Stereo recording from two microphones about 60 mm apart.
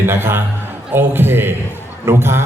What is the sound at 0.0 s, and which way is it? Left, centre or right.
A man's voice, right.